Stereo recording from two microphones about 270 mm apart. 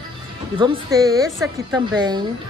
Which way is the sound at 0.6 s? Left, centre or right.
Centre.